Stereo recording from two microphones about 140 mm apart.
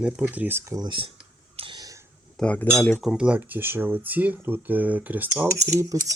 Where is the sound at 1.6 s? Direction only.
35° right (ahead or behind).